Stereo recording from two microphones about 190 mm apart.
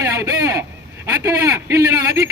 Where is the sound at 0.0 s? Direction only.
20° right (ahead or behind).